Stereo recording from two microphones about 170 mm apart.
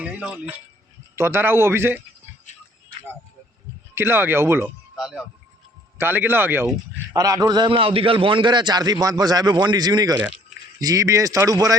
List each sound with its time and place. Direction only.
0.0 s a man's voice: 5° right (ahead or behind)
3.9 s a man's voice: 15° right (ahead or behind)
4.9 s a man's voice: 5° right (ahead or behind); by 11.8 s 20° right (ahead or behind)